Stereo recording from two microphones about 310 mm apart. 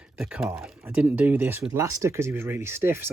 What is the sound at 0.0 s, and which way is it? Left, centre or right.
Speech, centre.